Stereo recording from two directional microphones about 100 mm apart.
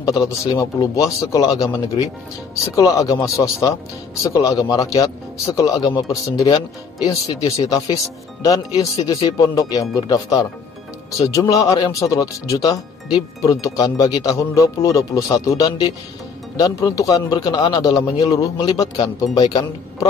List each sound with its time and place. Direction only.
0.0 s speech: 40° left (ahead or behind)
7.6 s speech: 40° left (ahead or behind)